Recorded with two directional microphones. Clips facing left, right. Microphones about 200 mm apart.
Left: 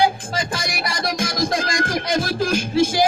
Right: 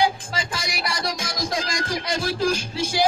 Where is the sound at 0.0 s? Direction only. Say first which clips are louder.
Left 3 dB; 50° left (ahead or behind).